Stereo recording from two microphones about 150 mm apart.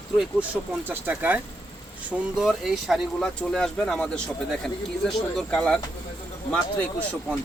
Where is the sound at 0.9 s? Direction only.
10° right (ahead or behind); by 5.8 s 5° left (ahead or behind).